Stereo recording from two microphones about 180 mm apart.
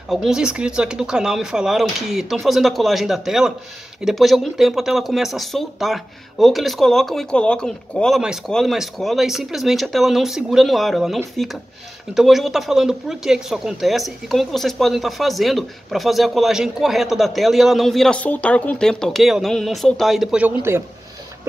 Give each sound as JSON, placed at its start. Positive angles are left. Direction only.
{"t": 0.1, "sound": "speech", "side_deg": 0}